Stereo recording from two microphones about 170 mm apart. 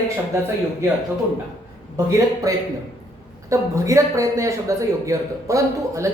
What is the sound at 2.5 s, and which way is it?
A man's voice, 20° right (ahead or behind).